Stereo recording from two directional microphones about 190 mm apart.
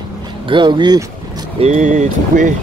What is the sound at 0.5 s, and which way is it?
Speech, 25° right (ahead or behind).